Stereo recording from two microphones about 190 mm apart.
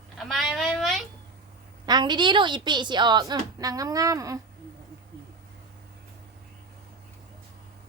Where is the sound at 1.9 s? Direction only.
25° right (ahead or behind).